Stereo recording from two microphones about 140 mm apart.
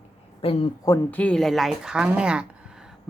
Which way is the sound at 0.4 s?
45° left (ahead or behind).